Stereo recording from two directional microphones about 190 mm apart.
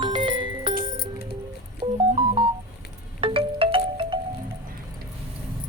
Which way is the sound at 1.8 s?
30° right (ahead or behind).